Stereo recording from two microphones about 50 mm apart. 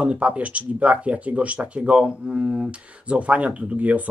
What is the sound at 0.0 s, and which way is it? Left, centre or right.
Speech, right.